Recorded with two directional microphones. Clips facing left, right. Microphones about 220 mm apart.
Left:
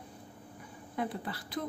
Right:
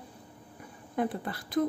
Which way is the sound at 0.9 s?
50° right (ahead or behind).